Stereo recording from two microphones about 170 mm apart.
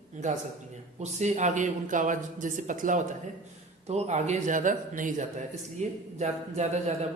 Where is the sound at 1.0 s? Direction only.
40° right (ahead or behind).